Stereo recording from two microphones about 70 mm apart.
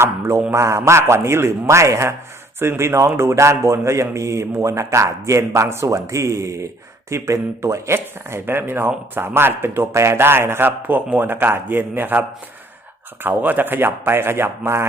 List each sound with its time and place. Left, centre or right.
0.0 s speech: right
13.2 s speech: right